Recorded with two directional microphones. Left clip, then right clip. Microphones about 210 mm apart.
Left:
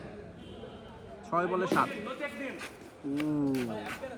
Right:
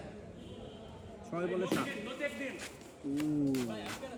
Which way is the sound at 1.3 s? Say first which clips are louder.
Left 7 dB; 10° left (ahead or behind).